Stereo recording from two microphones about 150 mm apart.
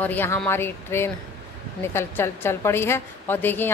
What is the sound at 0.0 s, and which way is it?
A woman's voice, 15° left (ahead or behind).